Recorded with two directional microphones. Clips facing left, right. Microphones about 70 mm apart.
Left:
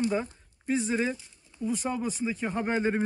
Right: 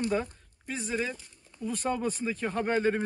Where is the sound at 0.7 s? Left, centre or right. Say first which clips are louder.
Left 5 dB; left.